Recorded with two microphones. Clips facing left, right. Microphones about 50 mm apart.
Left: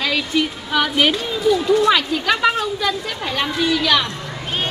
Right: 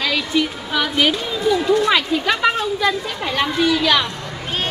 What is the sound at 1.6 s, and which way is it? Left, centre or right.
Speech, right.